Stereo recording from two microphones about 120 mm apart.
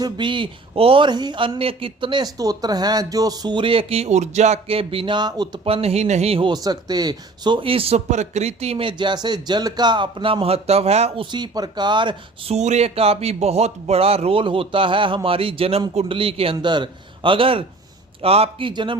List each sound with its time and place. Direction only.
0.0 s speech: 40° right (ahead or behind)
5.6 s speech: 55° right (ahead or behind)
6.5 s speech: 35° right (ahead or behind); by 11.1 s 60° right (ahead or behind)
11.2 s speech: 40° right (ahead or behind)
12.5 s speech: 70° right (ahead or behind)
18.7 s speech: 45° right (ahead or behind)